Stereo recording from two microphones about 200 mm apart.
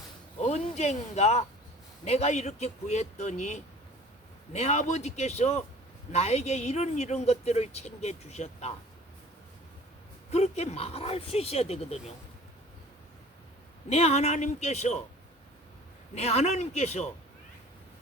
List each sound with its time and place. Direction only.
0.4 s speech: 35° left (ahead or behind)
10.3 s speech: 35° left (ahead or behind)
13.9 s speech: 30° left (ahead or behind)
16.1 s speech: 30° left (ahead or behind)